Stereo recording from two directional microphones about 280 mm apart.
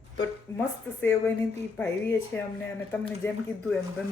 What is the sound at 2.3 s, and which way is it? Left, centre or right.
Speech, centre.